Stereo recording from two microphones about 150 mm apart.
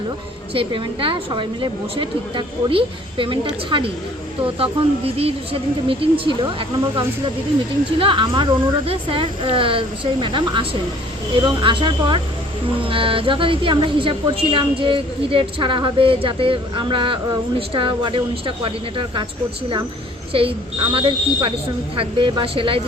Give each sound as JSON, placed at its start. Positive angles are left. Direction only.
{"t": 0.5, "sound": "a woman's voice", "side_deg": -35}
{"t": 5.1, "sound": "a woman's voice", "side_deg": -40}
{"t": 20.3, "sound": "a woman's voice", "side_deg": -35}